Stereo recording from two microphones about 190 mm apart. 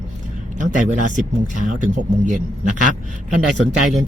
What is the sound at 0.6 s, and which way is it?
A man's voice, 40° right (ahead or behind).